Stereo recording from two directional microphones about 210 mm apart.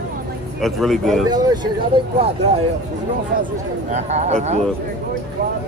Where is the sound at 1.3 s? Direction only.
20° right (ahead or behind).